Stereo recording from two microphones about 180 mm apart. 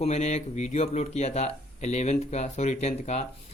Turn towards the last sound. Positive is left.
turn(degrees=40)  # may be behind; listen again after turning